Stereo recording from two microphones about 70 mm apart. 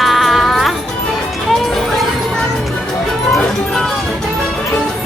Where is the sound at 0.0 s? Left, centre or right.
Centre.